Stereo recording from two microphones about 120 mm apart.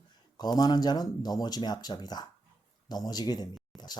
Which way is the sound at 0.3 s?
35° left (ahead or behind).